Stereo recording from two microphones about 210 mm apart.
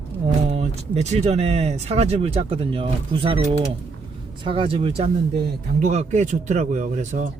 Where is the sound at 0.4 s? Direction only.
30° right (ahead or behind).